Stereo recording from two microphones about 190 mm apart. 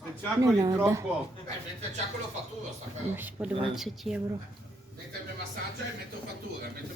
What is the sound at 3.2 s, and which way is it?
Speech, 10° right (ahead or behind).